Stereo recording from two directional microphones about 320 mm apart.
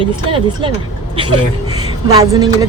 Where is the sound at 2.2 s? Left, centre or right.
Centre.